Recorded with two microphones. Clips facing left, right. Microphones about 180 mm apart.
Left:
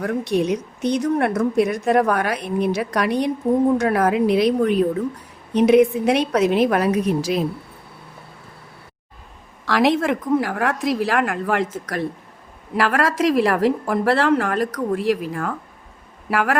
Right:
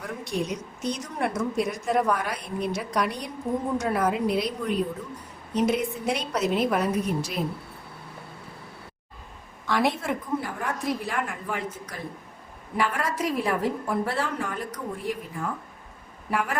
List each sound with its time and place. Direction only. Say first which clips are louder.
0.0 s a woman's voice: left 10 dB; 70° left (ahead or behind); by 3.3 s 85° left
3.8 s a woman's voice: left 7 dB; 75° left (ahead or behind); by 7.4 s 90° left
9.6 s a woman's voice: left 7 dB; 90° left